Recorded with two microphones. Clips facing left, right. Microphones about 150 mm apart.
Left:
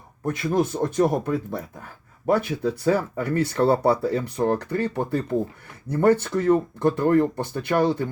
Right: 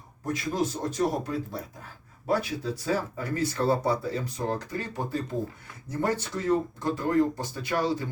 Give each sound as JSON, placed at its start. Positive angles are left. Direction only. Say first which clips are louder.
{"t": 0.3, "sound": "speech", "louder": "left 6 dB", "side_deg": 60}